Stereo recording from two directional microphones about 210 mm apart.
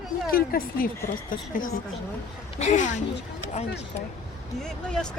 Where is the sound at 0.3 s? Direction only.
45° left (ahead or behind).